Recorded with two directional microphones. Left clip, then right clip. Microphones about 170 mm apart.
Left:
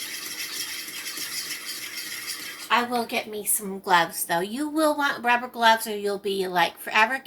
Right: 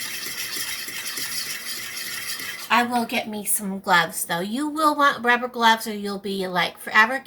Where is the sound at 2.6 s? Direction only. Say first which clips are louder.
Right 3 dB; 5° left (ahead or behind).